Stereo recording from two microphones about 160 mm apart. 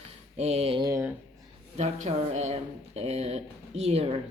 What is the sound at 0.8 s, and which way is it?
Speech, 20° right (ahead or behind).